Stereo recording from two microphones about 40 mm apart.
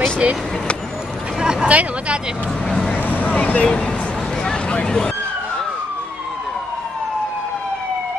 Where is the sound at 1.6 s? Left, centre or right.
Right.